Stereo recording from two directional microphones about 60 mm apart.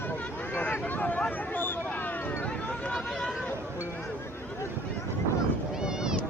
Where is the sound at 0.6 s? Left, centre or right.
Left.